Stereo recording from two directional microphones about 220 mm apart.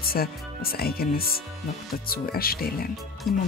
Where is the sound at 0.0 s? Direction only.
45° left (ahead or behind).